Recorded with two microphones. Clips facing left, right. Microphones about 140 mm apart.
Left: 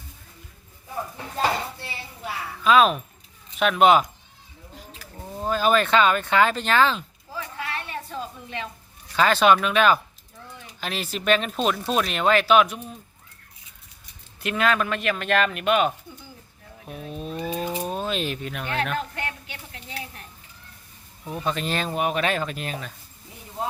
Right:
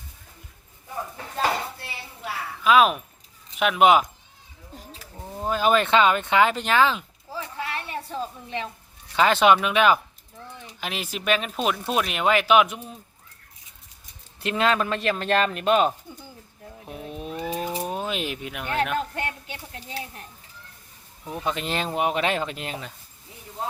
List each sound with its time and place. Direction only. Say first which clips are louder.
1.1 s dishes: left 1 dB; 5° left (ahead or behind)
2.6 s speech: even; 10° right (ahead or behind)
5.1 s speech: left 1 dB; 10° right (ahead or behind)
7.9 s a sound: right 2 dB; 30° right (ahead or behind)
9.1 s speech: even; 20° right (ahead or behind)
14.4 s speech: even; 25° right (ahead or behind)
16.8 s a sound: left 1 dB; 20° right (ahead or behind)
17.8 s speech: left 1 dB; 15° right (ahead or behind)
18.9 s speech: right 2 dB; 30° right (ahead or behind)
21.3 s speech: left 1 dB; 15° right (ahead or behind)